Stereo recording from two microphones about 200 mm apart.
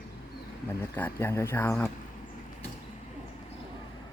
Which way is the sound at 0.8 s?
10° left (ahead or behind).